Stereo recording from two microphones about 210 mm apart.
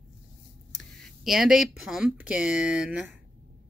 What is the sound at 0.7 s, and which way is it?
Speech, centre (ahead or behind).